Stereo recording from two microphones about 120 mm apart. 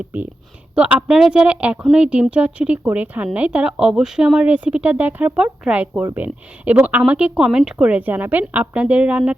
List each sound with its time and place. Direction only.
0.1 s speech: 15° right (ahead or behind)